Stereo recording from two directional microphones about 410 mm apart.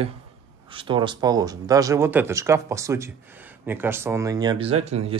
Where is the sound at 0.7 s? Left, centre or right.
Centre.